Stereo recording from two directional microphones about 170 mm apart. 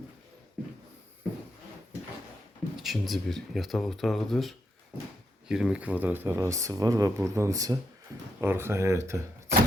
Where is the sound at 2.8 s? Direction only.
Centre (ahead or behind).